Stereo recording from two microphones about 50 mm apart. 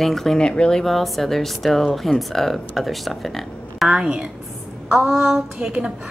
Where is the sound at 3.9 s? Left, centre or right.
Centre.